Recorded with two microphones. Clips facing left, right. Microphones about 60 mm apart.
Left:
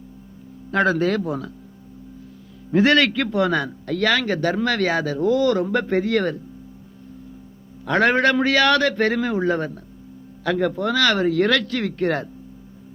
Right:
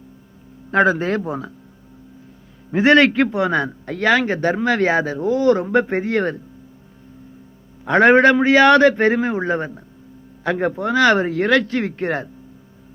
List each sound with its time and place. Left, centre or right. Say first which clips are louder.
0.7 s a man's voice: right 3 dB; right
2.7 s a man's voice: right 4 dB; right
7.9 s a man's voice: right 6 dB; right